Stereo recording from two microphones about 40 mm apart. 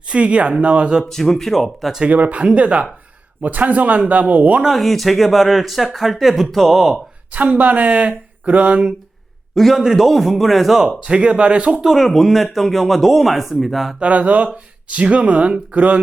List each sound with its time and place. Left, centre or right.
0.1 s speech: right
1.0 s speech: centre
2.0 s speech: right
4.7 s speech: centre
7.3 s speech: right
9.7 s speech: centre
11.0 s speech: right
11.9 s speech: centre
14.0 s speech: right